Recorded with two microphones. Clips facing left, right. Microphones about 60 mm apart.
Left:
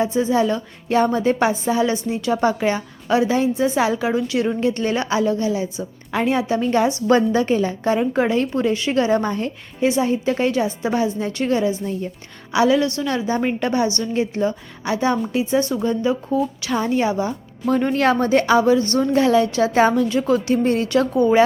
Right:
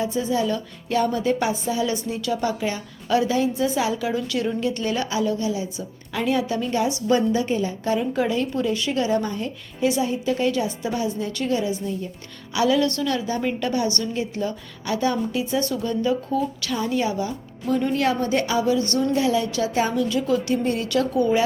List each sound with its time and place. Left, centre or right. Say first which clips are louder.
0.0 s speech: left 5 dB; left
3.1 s speech: left 3 dB; left
6.7 s speech: left 5 dB; left
7.9 s speech: left 4 dB; left
16.7 s speech: left 5 dB; left
17.7 s speech: left 4 dB; left
18.9 s speech: left 5 dB; left
19.5 s speech: left 6 dB; left